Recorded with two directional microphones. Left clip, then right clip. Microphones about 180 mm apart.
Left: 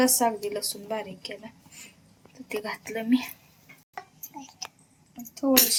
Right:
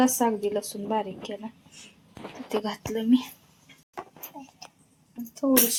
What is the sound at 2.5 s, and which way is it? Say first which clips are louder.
Speech: right 3 dB; 35° right (ahead or behind).